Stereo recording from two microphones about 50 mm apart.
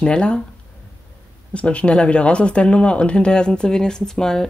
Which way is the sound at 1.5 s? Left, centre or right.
Left.